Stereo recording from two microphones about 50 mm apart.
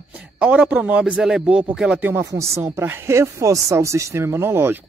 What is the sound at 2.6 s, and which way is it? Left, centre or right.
Speech, right.